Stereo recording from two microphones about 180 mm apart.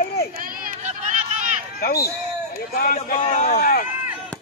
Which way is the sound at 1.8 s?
55° left (ahead or behind).